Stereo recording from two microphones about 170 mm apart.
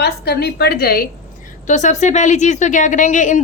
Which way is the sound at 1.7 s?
45° left (ahead or behind).